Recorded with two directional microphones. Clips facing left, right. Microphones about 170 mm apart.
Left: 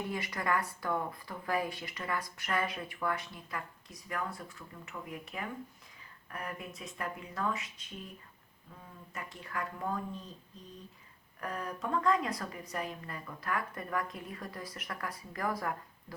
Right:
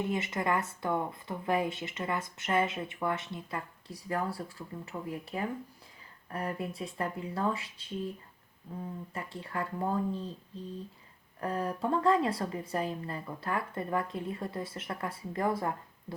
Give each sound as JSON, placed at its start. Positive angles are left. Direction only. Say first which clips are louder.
{"t": 0.0, "sound": "speech", "louder": "right 5 dB", "side_deg": -25}